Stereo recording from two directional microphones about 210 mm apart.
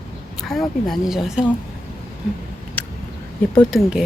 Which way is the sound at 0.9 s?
Centre (ahead or behind).